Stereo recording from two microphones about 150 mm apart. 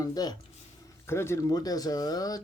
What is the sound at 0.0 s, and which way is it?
Speech, 25° left (ahead or behind).